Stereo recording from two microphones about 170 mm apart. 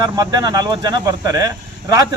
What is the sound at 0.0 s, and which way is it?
A man's voice, 20° right (ahead or behind).